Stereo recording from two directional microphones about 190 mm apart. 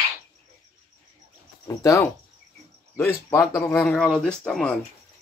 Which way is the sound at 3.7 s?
5° left (ahead or behind).